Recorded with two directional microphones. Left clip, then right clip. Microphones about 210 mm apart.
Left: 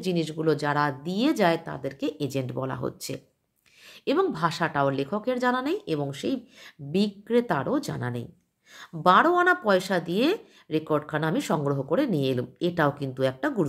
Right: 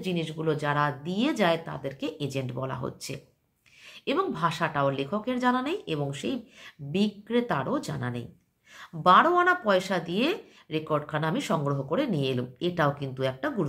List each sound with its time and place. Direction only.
0.0 s speech: 40° left (ahead or behind)